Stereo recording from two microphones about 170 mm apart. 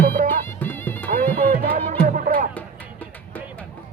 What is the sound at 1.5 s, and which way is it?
Music, 55° right (ahead or behind).